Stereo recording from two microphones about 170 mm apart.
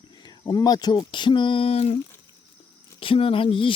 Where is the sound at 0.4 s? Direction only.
25° left (ahead or behind).